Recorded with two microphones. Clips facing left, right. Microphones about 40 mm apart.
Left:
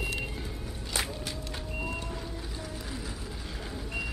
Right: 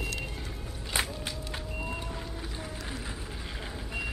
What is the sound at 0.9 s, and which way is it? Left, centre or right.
Music, right.